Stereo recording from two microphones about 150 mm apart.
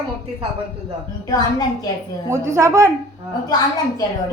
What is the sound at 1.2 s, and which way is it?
Speech, 25° left (ahead or behind).